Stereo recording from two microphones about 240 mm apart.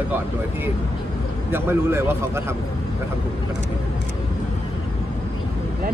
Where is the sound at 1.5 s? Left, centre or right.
Centre.